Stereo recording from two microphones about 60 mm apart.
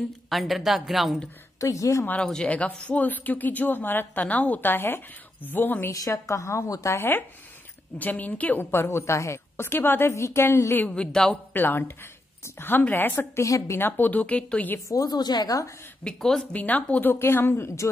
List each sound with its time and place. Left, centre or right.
0.3 s a woman's voice: centre
1.6 s a woman's voice: left
2.1 s a woman's voice: centre; by 5.9 s left
5.9 s a woman's voice: left
7.0 s a woman's voice: left
8.8 s a woman's voice: left
10.0 s a woman's voice: left
10.9 s a woman's voice: centre
11.5 s a woman's voice: left
14.9 s a woman's voice: left
16.0 s a woman's voice: centre
16.5 s speech: left
17.1 s a woman's voice: left